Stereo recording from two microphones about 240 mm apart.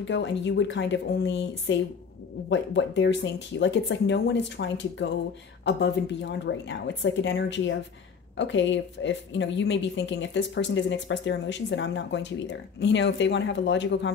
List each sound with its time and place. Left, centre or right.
0.0 s a woman's voice: left